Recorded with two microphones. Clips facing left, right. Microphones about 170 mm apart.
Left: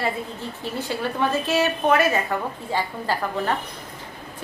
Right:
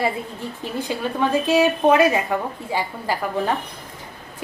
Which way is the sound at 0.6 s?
15° right (ahead or behind).